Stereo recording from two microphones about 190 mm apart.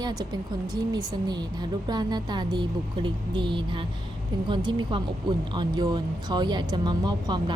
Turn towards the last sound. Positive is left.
turn(degrees=-20)  # may be behind; listen again after turning